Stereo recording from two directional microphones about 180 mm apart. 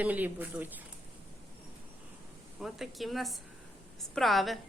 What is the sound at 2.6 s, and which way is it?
Speech, centre (ahead or behind).